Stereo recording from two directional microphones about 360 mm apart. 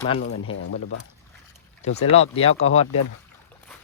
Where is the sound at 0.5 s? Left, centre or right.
Left.